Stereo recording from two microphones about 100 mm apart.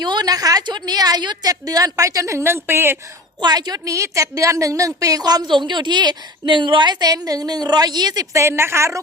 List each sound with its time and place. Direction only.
0.0 s a woman's voice: 45° right (ahead or behind); by 3.0 s 25° right (ahead or behind)
3.4 s a woman's voice: 40° right (ahead or behind)